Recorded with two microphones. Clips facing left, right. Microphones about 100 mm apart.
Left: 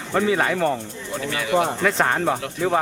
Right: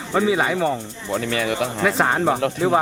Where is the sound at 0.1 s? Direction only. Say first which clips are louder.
Right 1 dB; 5° right (ahead or behind).